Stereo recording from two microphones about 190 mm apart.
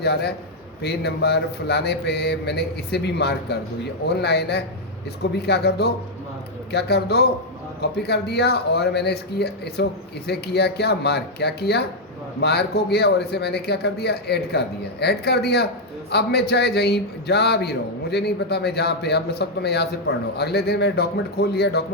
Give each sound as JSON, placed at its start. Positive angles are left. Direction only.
{"t": 0.0, "sound": "a man's voice", "side_deg": 60}